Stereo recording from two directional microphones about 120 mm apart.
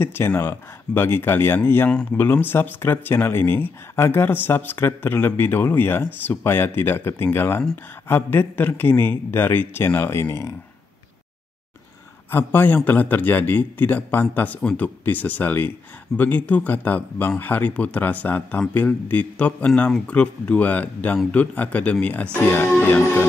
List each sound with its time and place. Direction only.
0.0 s speech: 20° left (ahead or behind)
12.3 s speech: 15° left (ahead or behind)